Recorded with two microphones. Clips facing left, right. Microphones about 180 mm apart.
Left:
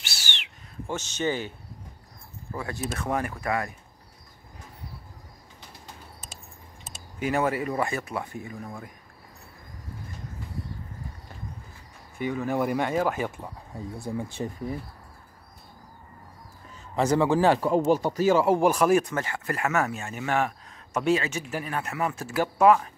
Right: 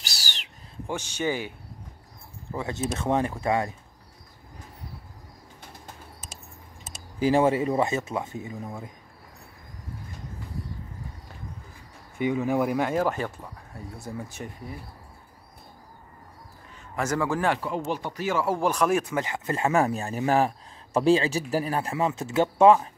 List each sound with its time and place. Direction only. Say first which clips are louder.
0.0 s owl: even; 40° right (ahead or behind)
0.8 s speech: even; 10° right (ahead or behind)
2.5 s a man's voice: right 3 dB; 20° right (ahead or behind)
6.2 s a sound: right 1 dB; centre (ahead or behind)
7.2 s a man's voice: right 5 dB; 30° right (ahead or behind)
12.2 s speech: right 3 dB; 15° right (ahead or behind)
12.4 s speech: left 2 dB; centre (ahead or behind)
13.2 s speech: left 1 dB; 20° left (ahead or behind)
16.9 s speech: left 4 dB; 30° left (ahead or behind)
18.4 s speech: left 4 dB; 20° left (ahead or behind)
18.7 s speech: left 3 dB; 5° left (ahead or behind)
19.1 s a man's voice: right 2 dB; 20° right (ahead or behind)